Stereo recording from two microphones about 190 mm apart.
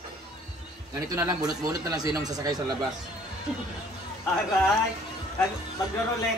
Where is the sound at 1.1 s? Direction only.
20° right (ahead or behind).